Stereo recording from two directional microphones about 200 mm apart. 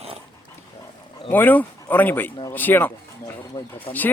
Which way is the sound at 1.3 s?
10° left (ahead or behind).